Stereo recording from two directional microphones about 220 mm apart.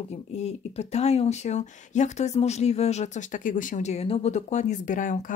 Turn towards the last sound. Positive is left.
turn(degrees=35)  # may be behind; listen again after turning